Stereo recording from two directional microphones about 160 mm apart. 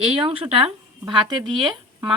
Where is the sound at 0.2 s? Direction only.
35° right (ahead or behind).